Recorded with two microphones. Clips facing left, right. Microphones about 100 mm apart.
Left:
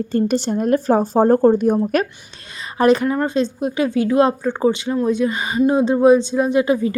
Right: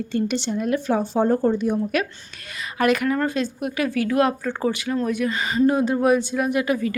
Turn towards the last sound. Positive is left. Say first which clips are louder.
# left 5 dB
turn(degrees=25)  # may be behind; listen again after turning